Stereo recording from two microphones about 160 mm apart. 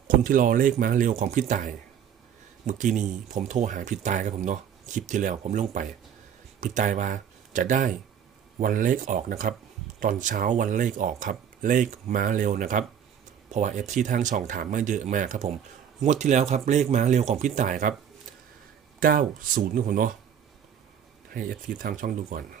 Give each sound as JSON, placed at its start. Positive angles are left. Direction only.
{"t": 0.3, "sound": "speech", "side_deg": -60}
{"t": 18.9, "sound": "speech", "side_deg": -60}
{"t": 21.2, "sound": "speech", "side_deg": -60}